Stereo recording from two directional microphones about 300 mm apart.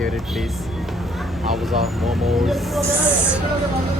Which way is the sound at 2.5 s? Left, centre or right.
Centre.